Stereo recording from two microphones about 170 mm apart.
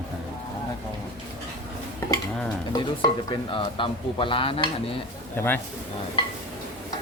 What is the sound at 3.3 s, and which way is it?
Speech, 30° left (ahead or behind).